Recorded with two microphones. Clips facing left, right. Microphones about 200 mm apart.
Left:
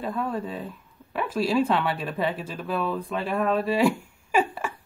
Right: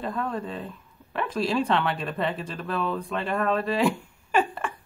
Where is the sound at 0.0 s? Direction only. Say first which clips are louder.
Left 1 dB; 5° left (ahead or behind).